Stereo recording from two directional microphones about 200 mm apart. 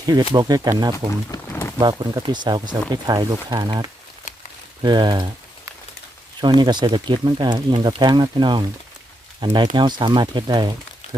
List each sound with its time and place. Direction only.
0.0 s speech: 20° right (ahead or behind)
0.9 s speech: 15° left (ahead or behind)
1.8 s speech: 20° right (ahead or behind)
4.3 s a sound: 40° left (ahead or behind)
4.8 s speech: 25° right (ahead or behind)
6.4 s speech: 20° right (ahead or behind)